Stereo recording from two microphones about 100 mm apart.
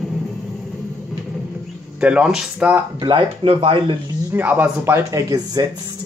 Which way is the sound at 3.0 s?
50° right (ahead or behind).